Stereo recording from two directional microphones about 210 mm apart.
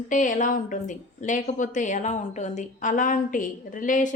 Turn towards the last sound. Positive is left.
turn(degrees=40)  # may be behind; listen again after turning